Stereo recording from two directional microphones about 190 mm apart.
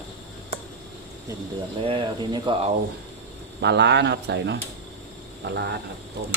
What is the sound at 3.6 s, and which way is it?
Speech, 65° right (ahead or behind).